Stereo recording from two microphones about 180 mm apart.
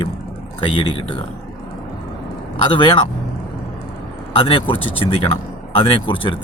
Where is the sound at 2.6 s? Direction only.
30° left (ahead or behind).